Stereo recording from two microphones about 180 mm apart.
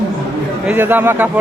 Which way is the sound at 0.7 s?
10° right (ahead or behind).